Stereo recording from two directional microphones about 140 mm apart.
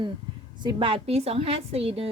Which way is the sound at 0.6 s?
40° right (ahead or behind).